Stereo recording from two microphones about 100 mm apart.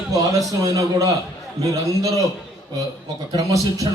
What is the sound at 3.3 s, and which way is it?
Speech, 35° right (ahead or behind).